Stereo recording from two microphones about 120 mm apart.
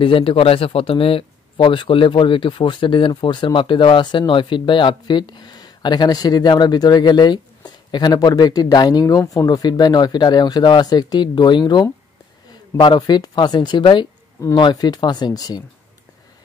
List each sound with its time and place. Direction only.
0.0 s speech: 50° left (ahead or behind); by 15.6 s 35° left (ahead or behind)